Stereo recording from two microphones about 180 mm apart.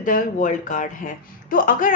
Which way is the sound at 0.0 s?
50° left (ahead or behind).